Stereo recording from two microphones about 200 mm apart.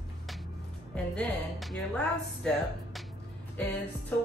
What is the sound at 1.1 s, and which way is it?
Speech, centre (ahead or behind).